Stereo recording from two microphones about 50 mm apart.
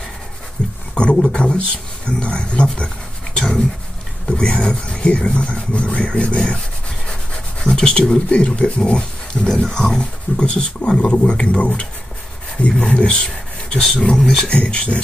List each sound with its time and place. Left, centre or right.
0.6 s dog: centre
0.9 s speech: centre
3.3 s speech: centre
4.3 s speech: centre
7.6 s speech: centre
14.1 s speech: centre
14.5 s speech: left